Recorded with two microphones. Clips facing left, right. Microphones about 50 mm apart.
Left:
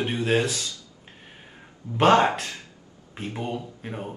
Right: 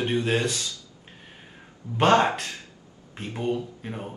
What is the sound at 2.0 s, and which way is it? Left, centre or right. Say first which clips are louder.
Speech: left 1 dB; centre.